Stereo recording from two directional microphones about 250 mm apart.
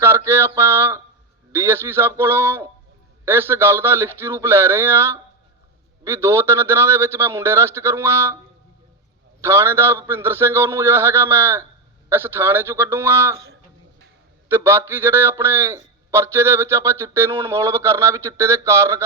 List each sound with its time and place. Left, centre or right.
0.0 s a sound: centre
1.5 s a man's voice: centre
9.4 s a man's voice: centre
14.5 s a man's voice: centre